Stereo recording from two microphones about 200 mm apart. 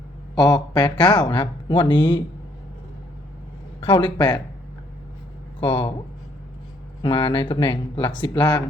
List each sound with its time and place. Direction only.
0.3 s speech: 20° left (ahead or behind)
3.8 s speech: 25° left (ahead or behind)
5.5 s speech: 25° left (ahead or behind)
7.0 s speech: 25° left (ahead or behind)